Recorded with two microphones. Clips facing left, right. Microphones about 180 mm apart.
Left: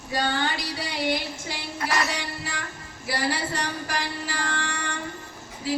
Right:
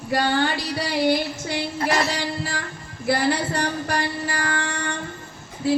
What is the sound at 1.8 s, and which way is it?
Speech, 30° right (ahead or behind).